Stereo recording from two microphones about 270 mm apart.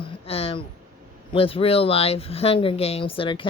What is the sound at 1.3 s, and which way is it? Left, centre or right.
Speech, centre.